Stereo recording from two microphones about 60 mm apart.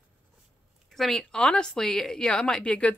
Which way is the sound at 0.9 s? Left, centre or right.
Centre.